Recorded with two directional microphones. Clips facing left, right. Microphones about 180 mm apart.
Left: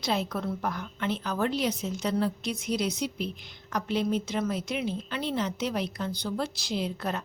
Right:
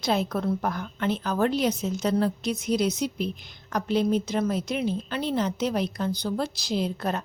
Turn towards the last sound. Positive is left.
turn(degrees=-40)  # may be behind; listen again after turning